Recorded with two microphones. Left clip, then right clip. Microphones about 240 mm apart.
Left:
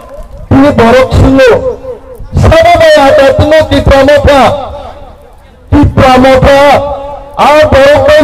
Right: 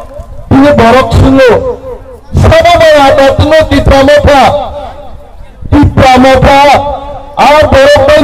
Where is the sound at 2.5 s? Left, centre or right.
Right.